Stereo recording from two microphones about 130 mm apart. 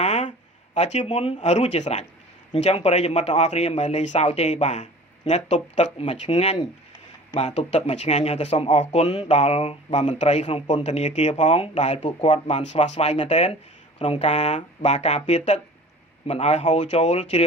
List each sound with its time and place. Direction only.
0.0 s speech: 65° left (ahead or behind)
16.2 s speech: 50° left (ahead or behind)